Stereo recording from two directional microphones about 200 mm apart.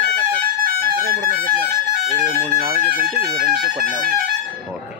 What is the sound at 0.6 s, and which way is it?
Music, 50° right (ahead or behind).